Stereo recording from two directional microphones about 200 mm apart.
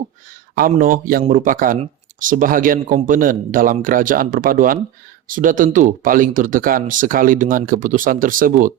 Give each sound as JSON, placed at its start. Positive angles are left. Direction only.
{"t": 0.7, "sound": "speech", "side_deg": -45}